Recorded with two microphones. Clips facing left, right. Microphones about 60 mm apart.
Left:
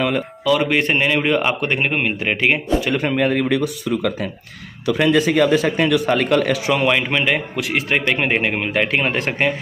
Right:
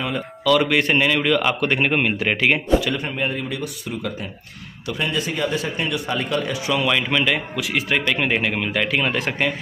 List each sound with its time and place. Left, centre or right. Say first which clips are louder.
0.5 s a man's voice: even; centre
1.9 s speech: even; centre
3.0 s speech: left 7 dB; left
6.0 s speech: left 7 dB; left
6.9 s a man's voice: left 2 dB; left
7.3 s speech: left 2 dB; left
7.9 s speech: left 2 dB; left